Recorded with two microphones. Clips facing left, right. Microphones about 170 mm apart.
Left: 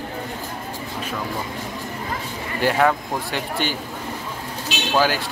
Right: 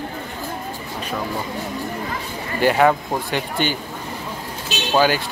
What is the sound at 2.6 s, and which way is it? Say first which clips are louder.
Speech: right 3 dB; 5° right (ahead or behind).